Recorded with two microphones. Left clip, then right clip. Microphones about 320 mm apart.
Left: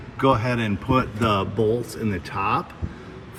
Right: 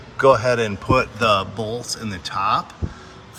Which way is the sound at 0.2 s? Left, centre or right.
Centre.